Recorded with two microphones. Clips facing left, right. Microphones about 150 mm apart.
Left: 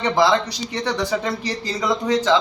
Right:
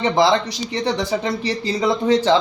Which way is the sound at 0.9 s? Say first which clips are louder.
Right 1 dB; 25° right (ahead or behind).